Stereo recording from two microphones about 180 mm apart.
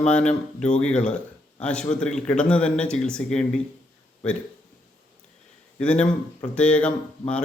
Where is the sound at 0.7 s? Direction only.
5° left (ahead or behind).